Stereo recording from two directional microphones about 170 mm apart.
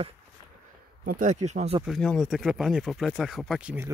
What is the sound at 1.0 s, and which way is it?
Speech, 55° right (ahead or behind).